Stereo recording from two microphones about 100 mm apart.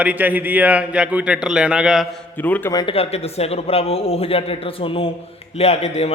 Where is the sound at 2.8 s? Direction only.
80° left; by 5.1 s 65° left (ahead or behind).